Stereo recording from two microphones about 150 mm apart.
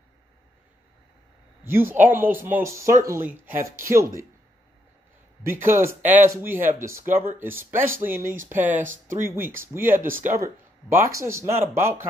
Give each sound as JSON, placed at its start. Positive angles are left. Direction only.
{"t": 1.6, "sound": "speech", "side_deg": -15}
{"t": 3.4, "sound": "speech", "side_deg": -70}
{"t": 3.9, "sound": "speech", "side_deg": -20}
{"t": 5.4, "sound": "speech", "side_deg": -15}